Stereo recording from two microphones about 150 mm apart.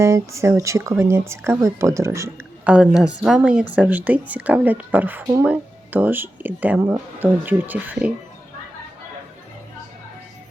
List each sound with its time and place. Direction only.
0.0 s speech: 20° right (ahead or behind)
2.6 s speech: 5° right (ahead or behind)